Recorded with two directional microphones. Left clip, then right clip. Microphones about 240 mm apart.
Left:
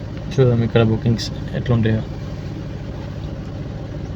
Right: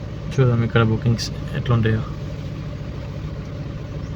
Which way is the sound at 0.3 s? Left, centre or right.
Centre.